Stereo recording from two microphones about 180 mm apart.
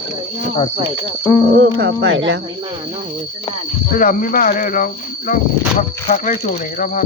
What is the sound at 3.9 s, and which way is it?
Speech, 50° left (ahead or behind).